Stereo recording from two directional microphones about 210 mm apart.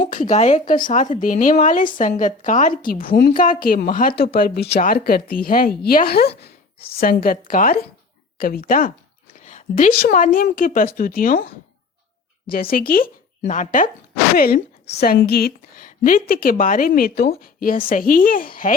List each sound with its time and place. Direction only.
0.0 s a woman's voice: 40° left (ahead or behind)
12.7 s a woman's voice: 45° left (ahead or behind)